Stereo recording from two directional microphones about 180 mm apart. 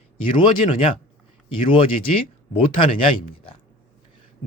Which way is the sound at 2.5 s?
30° left (ahead or behind).